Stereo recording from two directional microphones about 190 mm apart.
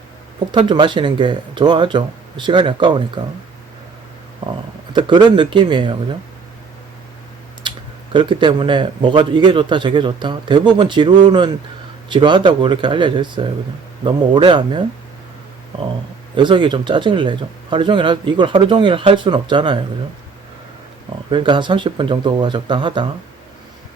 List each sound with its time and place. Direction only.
0.5 s speech: 25° right (ahead or behind)
4.9 s speech: 25° right (ahead or behind)
7.6 s typing: 25° right (ahead or behind)
8.1 s speech: 25° right (ahead or behind)
16.3 s speech: 25° right (ahead or behind)
21.2 s speech: 25° right (ahead or behind)